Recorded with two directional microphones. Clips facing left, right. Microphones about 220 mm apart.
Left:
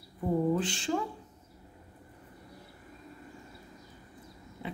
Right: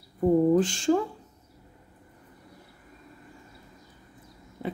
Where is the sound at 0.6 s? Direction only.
45° right (ahead or behind).